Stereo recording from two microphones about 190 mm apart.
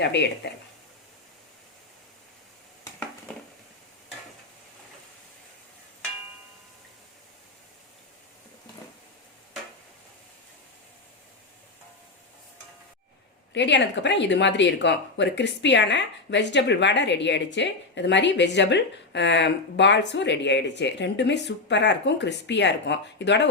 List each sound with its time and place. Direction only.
0.0 s speech: 65° left (ahead or behind)
13.5 s speech: 65° left (ahead or behind)